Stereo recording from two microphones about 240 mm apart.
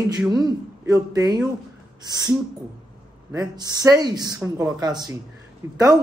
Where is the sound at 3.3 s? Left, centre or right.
Centre.